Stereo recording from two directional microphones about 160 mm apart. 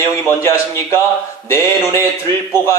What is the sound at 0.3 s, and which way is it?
A man's voice, 15° left (ahead or behind).